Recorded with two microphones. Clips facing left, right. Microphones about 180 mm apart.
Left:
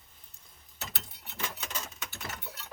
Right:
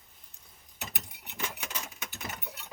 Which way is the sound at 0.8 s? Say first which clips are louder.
Even; 15° right (ahead or behind).